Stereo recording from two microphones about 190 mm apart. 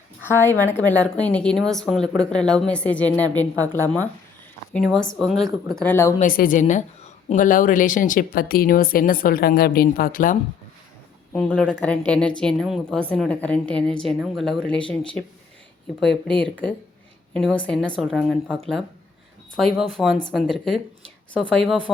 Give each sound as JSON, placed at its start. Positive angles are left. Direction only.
{"t": 0.2, "sound": "a woman's voice", "side_deg": 10}
{"t": 4.8, "sound": "a woman's voice", "side_deg": 0}
{"t": 6.1, "sound": "a woman's voice", "side_deg": 45}
{"t": 11.3, "sound": "a woman's voice", "side_deg": 5}
{"t": 21.9, "sound": "a woman's voice", "side_deg": 0}